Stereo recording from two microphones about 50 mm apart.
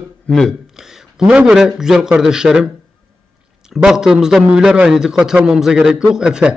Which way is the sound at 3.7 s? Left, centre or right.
Centre.